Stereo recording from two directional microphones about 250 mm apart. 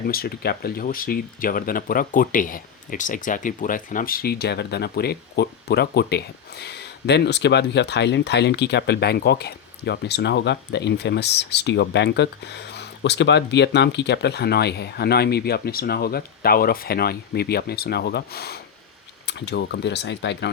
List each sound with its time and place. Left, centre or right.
0.1 s speech: left